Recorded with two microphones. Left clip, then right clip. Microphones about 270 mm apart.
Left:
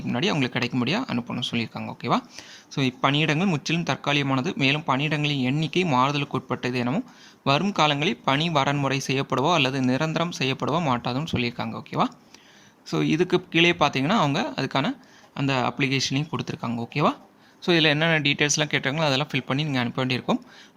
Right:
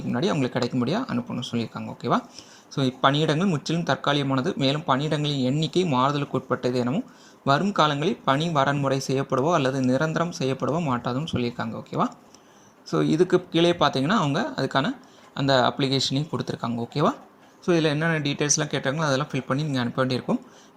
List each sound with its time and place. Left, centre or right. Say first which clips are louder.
0.1 s speech: even; centre
17.9 s speech: left 3 dB; left
18.2 s speech: left 3 dB; centre